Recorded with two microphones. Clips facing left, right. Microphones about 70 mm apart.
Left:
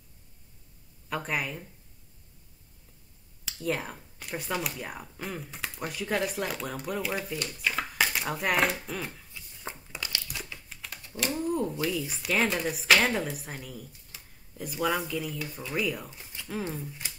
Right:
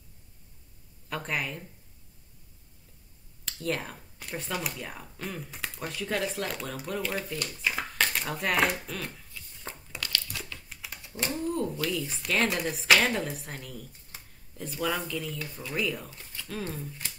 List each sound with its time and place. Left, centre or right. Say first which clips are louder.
1.0 s speech: left 1 dB; centre
3.4 s speech: left 1 dB; centre
7.6 s a sound: left 1 dB; centre
8.8 s speech: left 1 dB; centre
9.7 s crumpling: right 1 dB; centre
10.7 s dog: even; centre
11.3 s speech: left 1 dB; centre
14.1 s a sound: right 4 dB; right
14.6 s speech: left 2 dB; centre